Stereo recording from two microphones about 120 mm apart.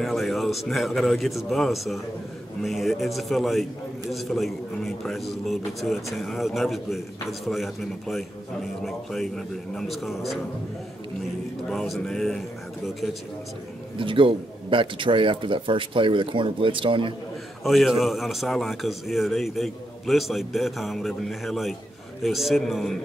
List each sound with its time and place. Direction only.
0.0 s a man's voice: centre (ahead or behind)
11.7 s a man's voice: centre (ahead or behind)
13.9 s speech: 45° right (ahead or behind)
17.6 s a man's voice: centre (ahead or behind)